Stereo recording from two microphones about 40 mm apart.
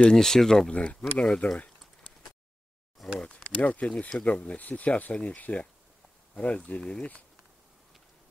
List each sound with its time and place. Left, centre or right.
0.1 s speech: centre
0.7 s speech: left
3.0 s a sound: centre
3.4 s speech: left